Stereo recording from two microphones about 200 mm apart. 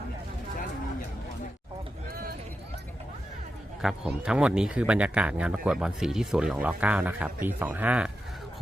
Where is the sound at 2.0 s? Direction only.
45° right (ahead or behind).